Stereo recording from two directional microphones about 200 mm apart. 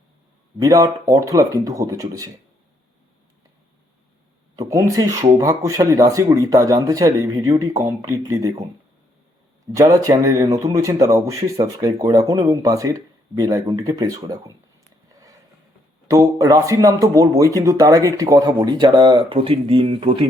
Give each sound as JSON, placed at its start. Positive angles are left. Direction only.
{"t": 0.6, "sound": "speech", "side_deg": -15}
{"t": 4.7, "sound": "speech", "side_deg": -15}
{"t": 9.7, "sound": "speech", "side_deg": -15}
{"t": 16.0, "sound": "speech", "side_deg": -15}